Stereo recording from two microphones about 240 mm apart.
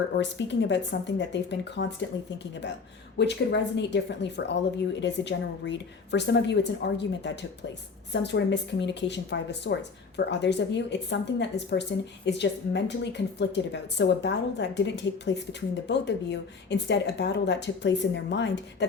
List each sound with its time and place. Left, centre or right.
0.2 s a woman's voice: left
3.2 s a woman's voice: left